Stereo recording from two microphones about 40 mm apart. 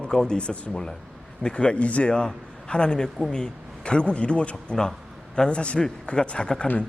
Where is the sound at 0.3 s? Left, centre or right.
Left.